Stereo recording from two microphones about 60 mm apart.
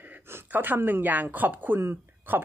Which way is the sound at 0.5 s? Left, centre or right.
Right.